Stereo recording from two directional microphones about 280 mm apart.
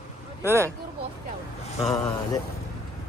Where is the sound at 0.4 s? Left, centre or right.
Centre.